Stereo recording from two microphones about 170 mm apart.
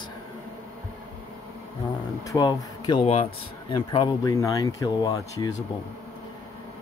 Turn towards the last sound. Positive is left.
turn(degrees=20)  # may be behind; listen again after turning